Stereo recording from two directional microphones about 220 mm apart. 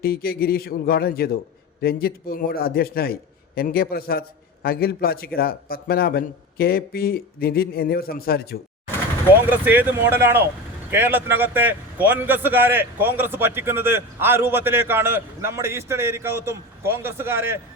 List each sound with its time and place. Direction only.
0.0 s a man's voice: 45° left (ahead or behind)
9.6 s a man's voice: 10° right (ahead or behind)